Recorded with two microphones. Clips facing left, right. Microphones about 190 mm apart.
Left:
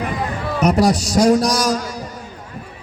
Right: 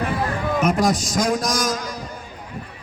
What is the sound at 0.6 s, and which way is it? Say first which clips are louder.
A man's voice: left 5 dB; 40° left (ahead or behind).